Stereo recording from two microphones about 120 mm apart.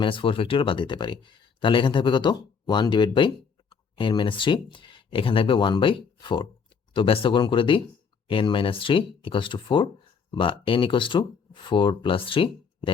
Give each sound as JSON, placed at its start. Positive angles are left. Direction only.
{"t": 0.0, "sound": "speech", "side_deg": 45}